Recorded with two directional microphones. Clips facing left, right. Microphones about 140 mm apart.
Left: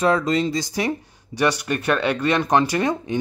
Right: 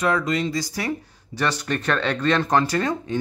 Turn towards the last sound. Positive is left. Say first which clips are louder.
# left 2 dB
turn(degrees=15)  # may be behind; listen again after turning